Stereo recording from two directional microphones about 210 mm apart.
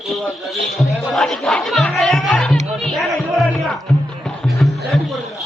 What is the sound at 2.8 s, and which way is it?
Music, centre (ahead or behind).